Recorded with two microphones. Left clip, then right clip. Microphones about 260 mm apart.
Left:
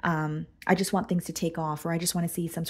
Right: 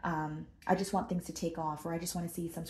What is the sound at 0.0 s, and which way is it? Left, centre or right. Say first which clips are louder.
Speech: left 7 dB; left.